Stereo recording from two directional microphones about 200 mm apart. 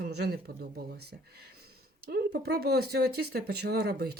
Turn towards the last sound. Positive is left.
turn(degrees=-55)  # may be behind; listen again after turning